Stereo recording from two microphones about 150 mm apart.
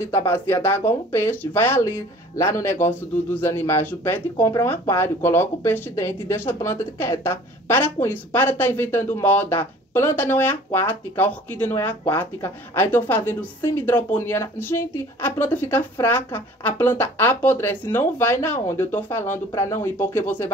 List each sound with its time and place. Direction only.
0.0 s speech: 15° left (ahead or behind)